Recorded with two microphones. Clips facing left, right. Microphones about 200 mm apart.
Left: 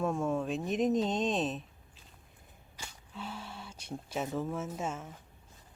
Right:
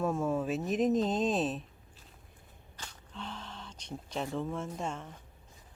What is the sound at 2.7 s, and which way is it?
Speech, 10° left (ahead or behind).